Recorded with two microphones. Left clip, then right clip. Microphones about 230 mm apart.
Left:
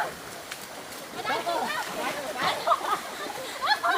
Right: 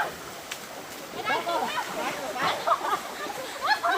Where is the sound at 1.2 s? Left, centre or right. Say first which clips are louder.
Right 1 dB; centre.